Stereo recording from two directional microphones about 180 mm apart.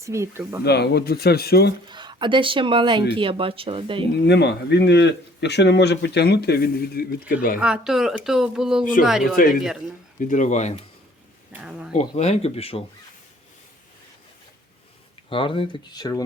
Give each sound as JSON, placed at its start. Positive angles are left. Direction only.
{"t": 0.0, "sound": "speech", "side_deg": -15}
{"t": 0.6, "sound": "speech", "side_deg": 65}
{"t": 1.9, "sound": "speech", "side_deg": -25}
{"t": 4.3, "sound": "a man's voice", "side_deg": 70}
{"t": 7.6, "sound": "speech", "side_deg": -5}
{"t": 8.8, "sound": "speech", "side_deg": 50}
{"t": 11.6, "sound": "speech", "side_deg": -5}
{"t": 11.9, "sound": "speech", "side_deg": 40}
{"t": 15.3, "sound": "speech", "side_deg": 30}